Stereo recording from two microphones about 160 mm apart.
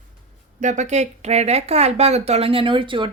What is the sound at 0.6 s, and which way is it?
Speech, 50° right (ahead or behind).